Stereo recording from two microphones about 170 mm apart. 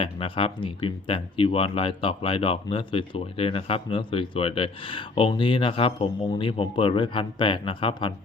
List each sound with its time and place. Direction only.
0.0 s speech: 30° left (ahead or behind)